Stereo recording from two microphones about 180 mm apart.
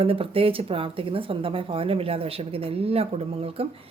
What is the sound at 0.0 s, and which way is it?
A woman's voice, 30° right (ahead or behind).